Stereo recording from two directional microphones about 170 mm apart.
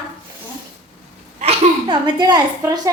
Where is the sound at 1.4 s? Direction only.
30° right (ahead or behind).